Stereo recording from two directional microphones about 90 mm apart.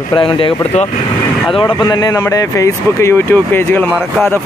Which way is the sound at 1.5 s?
65° left (ahead or behind).